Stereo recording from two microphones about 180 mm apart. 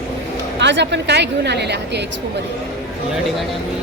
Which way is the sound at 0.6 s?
75° right (ahead or behind).